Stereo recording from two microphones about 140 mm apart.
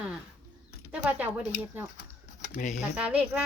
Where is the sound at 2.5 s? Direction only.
90° left.